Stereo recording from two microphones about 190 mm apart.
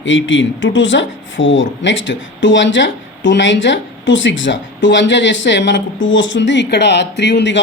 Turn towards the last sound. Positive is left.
turn(degrees=65)  # may be behind; listen again after turning